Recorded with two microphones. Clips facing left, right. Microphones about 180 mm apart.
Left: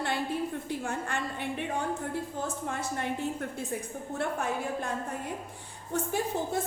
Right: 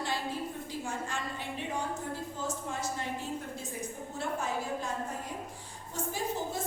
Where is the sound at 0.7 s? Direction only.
60° left (ahead or behind).